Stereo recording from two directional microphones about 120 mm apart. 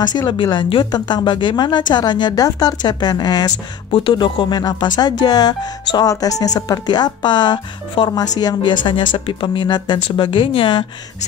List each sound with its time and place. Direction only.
0.0 s speech: 35° left (ahead or behind)